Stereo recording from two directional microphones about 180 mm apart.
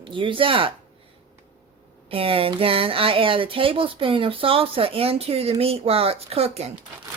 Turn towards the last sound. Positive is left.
turn(degrees=-35)  # may be behind; listen again after turning